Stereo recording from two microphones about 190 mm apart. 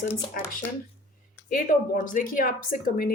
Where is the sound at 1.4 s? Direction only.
45° left (ahead or behind).